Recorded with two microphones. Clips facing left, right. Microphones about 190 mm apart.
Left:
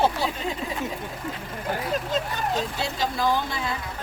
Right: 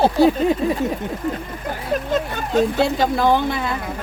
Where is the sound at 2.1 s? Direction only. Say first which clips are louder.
Right 10 dB; 60° right (ahead or behind).